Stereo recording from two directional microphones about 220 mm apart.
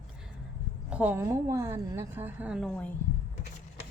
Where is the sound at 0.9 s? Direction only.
5° right (ahead or behind).